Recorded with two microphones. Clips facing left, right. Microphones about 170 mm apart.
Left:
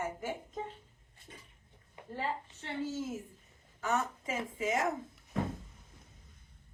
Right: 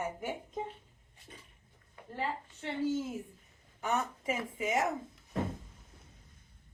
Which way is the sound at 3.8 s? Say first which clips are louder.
Right 1 dB; 20° right (ahead or behind).